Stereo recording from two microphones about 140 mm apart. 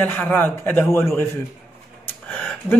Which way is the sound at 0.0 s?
10° left (ahead or behind).